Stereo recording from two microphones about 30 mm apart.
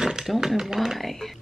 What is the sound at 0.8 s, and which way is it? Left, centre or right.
Speech, centre.